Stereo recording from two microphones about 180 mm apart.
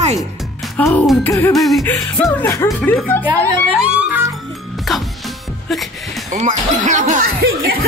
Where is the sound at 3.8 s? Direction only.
5° right (ahead or behind).